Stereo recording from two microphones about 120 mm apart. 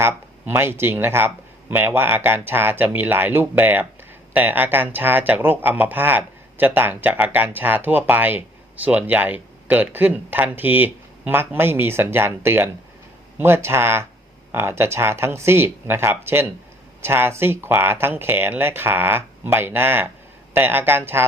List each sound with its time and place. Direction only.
0.0 s speech: 20° right (ahead or behind)